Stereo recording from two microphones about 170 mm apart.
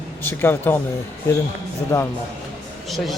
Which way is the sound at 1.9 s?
15° left (ahead or behind).